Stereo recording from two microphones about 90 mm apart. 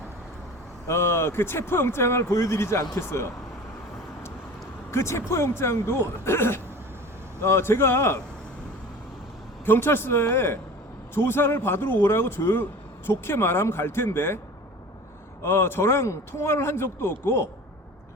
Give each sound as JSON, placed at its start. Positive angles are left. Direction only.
{"t": 0.9, "sound": "speech", "side_deg": 30}
{"t": 4.9, "sound": "speech", "side_deg": 30}
{"t": 9.6, "sound": "speech", "side_deg": 25}
{"t": 15.4, "sound": "speech", "side_deg": 25}